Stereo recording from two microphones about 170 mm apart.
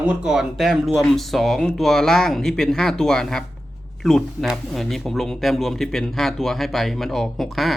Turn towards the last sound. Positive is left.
turn(degrees=0)  # may be behind; listen again after turning